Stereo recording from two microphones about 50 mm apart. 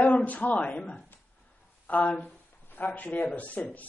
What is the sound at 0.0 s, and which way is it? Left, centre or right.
A man's voice, left.